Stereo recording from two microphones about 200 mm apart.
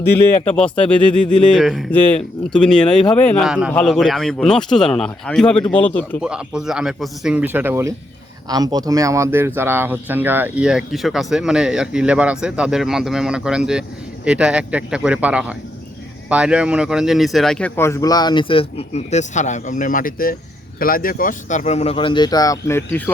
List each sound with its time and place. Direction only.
0.1 s a man's voice: 5° left (ahead or behind)
6.2 s speech: 5° right (ahead or behind)